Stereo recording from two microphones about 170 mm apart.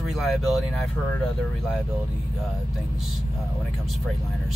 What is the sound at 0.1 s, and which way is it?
Speech, centre (ahead or behind).